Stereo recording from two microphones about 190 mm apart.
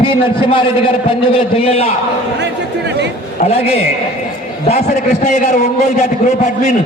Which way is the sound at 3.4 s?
35° left (ahead or behind).